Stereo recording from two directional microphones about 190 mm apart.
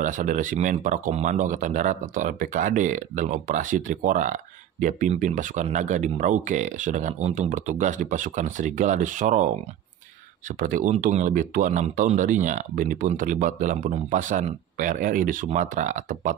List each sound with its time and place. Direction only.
0.0 s speech: 40° right (ahead or behind)
10.6 s speech: 45° right (ahead or behind)